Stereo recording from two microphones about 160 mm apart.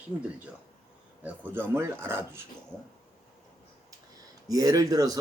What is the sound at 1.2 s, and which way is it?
Speech, 15° right (ahead or behind).